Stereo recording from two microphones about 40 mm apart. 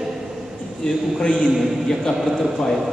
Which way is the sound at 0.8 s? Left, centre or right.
Centre.